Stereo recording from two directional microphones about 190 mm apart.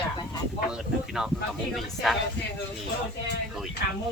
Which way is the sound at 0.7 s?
5° right (ahead or behind).